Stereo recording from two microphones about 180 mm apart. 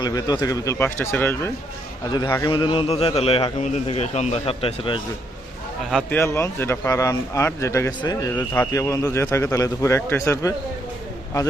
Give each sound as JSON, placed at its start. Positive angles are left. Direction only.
{"t": 0.0, "sound": "a man's voice", "side_deg": 20}
{"t": 2.0, "sound": "a man's voice", "side_deg": 25}
{"t": 5.9, "sound": "a man's voice", "side_deg": 10}